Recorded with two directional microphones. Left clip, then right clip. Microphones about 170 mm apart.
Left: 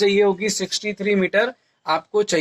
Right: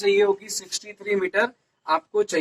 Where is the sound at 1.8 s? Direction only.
35° left (ahead or behind).